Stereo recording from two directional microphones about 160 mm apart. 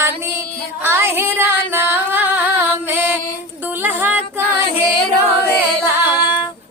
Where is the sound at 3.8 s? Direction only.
10° right (ahead or behind).